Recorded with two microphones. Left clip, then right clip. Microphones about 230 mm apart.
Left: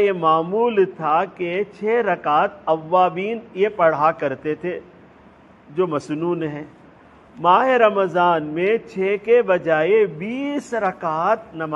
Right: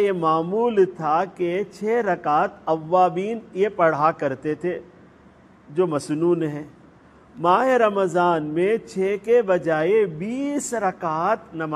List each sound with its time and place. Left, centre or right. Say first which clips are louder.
0.0 s a man's voice: left 3 dB; right